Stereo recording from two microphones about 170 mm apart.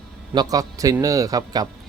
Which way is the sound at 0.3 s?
20° right (ahead or behind).